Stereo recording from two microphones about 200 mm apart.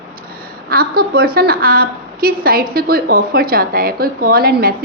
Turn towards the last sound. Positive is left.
turn(degrees=-50)  # may be behind; listen again after turning